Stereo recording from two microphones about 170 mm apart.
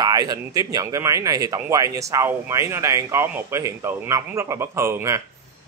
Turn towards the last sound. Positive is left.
turn(degrees=-15)  # may be behind; listen again after turning